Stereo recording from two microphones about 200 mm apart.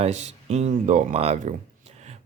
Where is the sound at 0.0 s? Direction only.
35° right (ahead or behind).